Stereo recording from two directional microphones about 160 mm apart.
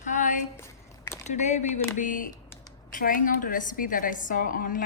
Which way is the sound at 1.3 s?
45° left (ahead or behind).